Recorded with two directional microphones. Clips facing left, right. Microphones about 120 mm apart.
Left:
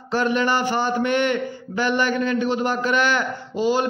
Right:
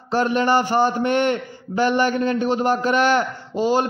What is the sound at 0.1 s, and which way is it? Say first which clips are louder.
A man's voice: right 2 dB; 40° right (ahead or behind).